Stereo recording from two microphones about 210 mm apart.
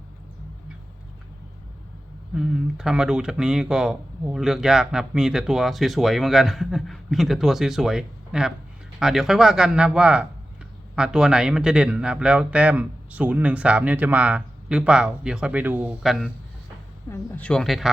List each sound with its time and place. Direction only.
2.3 s speech: 5° right (ahead or behind)